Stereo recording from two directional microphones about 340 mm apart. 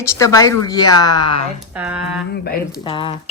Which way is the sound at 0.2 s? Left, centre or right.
Centre.